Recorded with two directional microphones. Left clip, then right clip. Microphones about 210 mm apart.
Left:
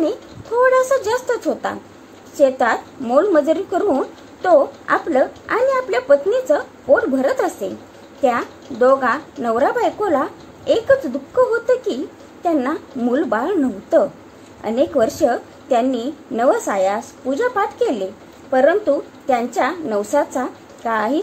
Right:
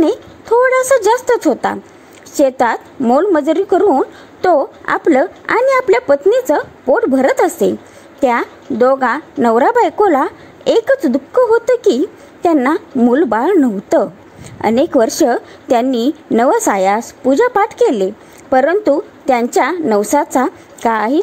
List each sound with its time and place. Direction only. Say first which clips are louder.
0.0 s a woman's voice: right 6 dB; 40° right (ahead or behind)